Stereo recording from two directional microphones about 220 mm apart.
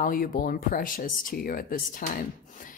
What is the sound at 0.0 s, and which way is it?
A woman's voice, 40° left (ahead or behind).